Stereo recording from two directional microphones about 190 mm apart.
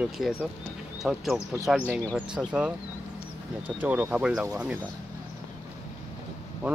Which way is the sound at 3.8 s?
10° right (ahead or behind).